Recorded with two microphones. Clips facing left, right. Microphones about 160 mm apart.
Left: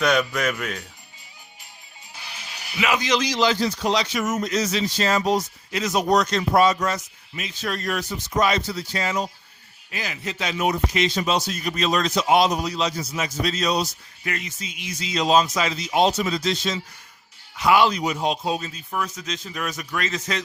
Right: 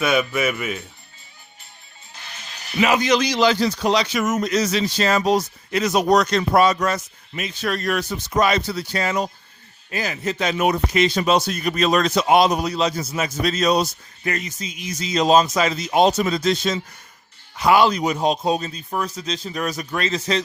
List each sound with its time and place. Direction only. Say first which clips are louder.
0.0 s speech: right 1 dB; 5° right (ahead or behind)
2.1 s music: even; 10° left (ahead or behind)
2.7 s a man's voice: right 5 dB; 40° right (ahead or behind); by 9.3 s 60° right (ahead or behind)
9.9 s speech: right 6 dB; 45° right (ahead or behind)